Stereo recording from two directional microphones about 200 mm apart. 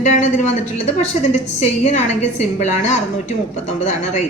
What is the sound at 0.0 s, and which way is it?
A woman's voice, 40° left (ahead or behind).